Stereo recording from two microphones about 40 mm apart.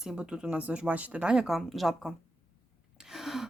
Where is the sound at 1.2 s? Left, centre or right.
Right.